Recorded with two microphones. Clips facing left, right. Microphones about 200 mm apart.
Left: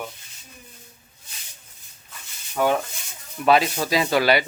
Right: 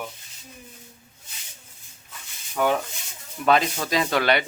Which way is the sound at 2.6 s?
5° left (ahead or behind).